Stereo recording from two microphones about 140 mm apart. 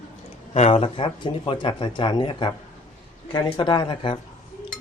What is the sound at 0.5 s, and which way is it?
Speech, 45° left (ahead or behind).